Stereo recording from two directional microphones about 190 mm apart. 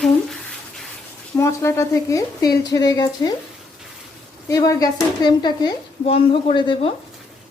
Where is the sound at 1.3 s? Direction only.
15° left (ahead or behind).